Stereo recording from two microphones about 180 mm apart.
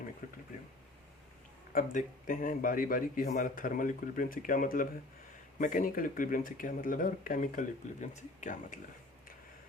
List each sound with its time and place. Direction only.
0.2 s speech: 50° left (ahead or behind)
1.7 s speech: 45° left (ahead or behind)